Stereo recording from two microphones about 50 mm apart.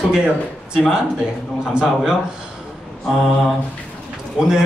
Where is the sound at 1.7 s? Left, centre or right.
Centre.